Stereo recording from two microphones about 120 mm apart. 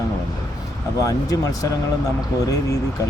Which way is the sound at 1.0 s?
30° left (ahead or behind).